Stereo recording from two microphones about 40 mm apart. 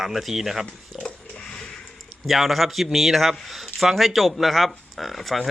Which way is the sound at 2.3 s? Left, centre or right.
Centre.